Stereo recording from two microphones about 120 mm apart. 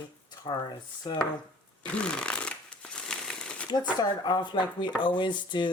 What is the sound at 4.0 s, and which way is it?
Speech, 35° left (ahead or behind).